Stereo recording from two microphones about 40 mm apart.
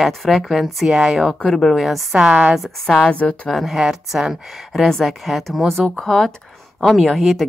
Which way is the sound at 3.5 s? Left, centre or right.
Centre.